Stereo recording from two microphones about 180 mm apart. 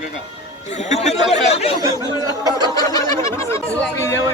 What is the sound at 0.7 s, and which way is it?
Speech, 40° left (ahead or behind).